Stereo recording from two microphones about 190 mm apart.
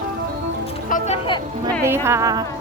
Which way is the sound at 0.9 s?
35° left (ahead or behind).